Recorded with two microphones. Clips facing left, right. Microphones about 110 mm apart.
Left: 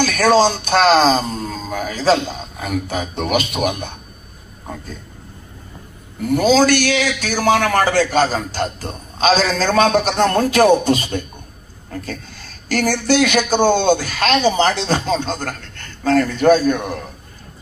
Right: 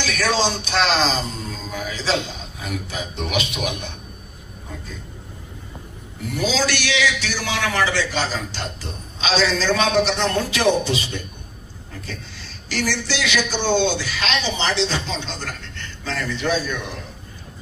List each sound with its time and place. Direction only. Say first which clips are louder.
0.0 s speech: left 8 dB; 45° left (ahead or behind)
6.2 s speech: left 9 dB; 50° left (ahead or behind)